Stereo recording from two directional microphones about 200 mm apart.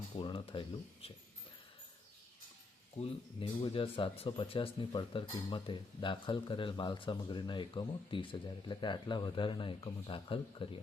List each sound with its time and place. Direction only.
0.2 s a sound: 25° left (ahead or behind)
1.0 s speech: 30° left (ahead or behind)
3.0 s speech: 25° left (ahead or behind)